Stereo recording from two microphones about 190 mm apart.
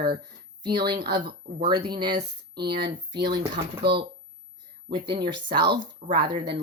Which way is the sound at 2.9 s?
25° right (ahead or behind).